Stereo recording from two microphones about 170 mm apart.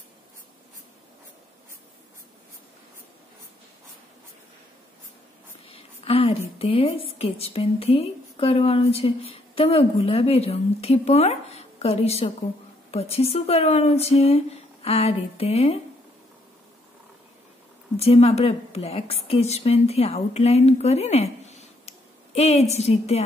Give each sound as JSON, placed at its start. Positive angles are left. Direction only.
{"t": 5.7, "sound": "a sound", "side_deg": 35}
{"t": 6.6, "sound": "a woman's voice", "side_deg": 35}
{"t": 17.9, "sound": "a woman's voice", "side_deg": 35}